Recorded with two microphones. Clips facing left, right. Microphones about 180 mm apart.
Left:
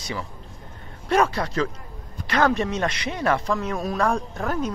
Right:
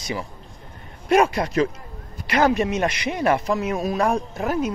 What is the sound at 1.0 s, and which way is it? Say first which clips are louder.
Speech: right 3 dB; 15° right (ahead or behind).